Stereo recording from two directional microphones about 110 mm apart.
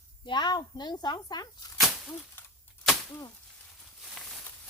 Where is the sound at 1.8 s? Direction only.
5° right (ahead or behind).